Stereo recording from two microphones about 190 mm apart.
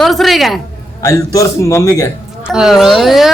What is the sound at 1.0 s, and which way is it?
A man's voice, 15° left (ahead or behind).